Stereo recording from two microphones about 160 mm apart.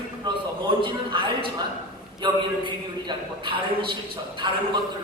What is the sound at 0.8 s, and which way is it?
A man's voice, 30° right (ahead or behind).